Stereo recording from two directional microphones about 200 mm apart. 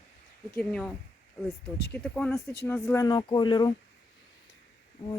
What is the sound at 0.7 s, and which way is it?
Speech, centre (ahead or behind).